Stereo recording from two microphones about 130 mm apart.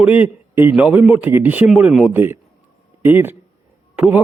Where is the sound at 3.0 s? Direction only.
15° right (ahead or behind).